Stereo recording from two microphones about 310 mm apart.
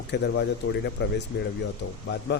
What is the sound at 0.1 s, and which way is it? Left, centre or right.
Speech, left.